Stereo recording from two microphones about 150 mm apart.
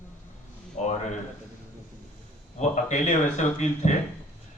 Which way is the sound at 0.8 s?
50° left (ahead or behind).